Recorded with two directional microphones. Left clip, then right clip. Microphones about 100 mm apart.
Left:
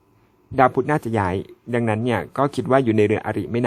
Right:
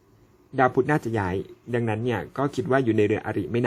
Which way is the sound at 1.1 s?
50° left (ahead or behind).